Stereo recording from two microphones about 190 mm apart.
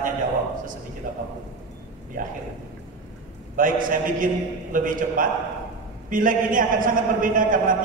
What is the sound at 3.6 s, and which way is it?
A man's voice, 45° right (ahead or behind).